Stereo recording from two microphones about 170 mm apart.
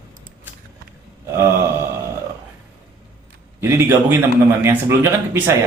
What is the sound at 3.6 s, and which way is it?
A man's voice, 15° right (ahead or behind).